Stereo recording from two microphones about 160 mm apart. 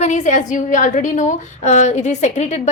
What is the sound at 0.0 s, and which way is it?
A woman's voice, 50° left (ahead or behind).